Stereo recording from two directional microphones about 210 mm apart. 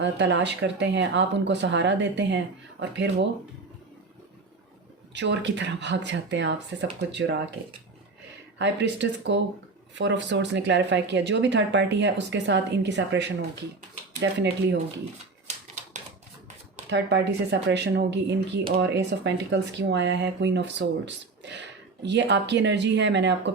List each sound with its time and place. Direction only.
0.0 s speech: 60° right (ahead or behind)
5.1 s speech: 55° right (ahead or behind)
8.5 s speech: 60° right (ahead or behind)
15.4 s typewriter: 35° right (ahead or behind)
16.9 s speech: 55° right (ahead or behind)